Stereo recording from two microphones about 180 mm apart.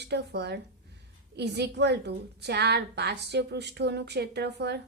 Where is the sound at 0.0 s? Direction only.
70° right (ahead or behind).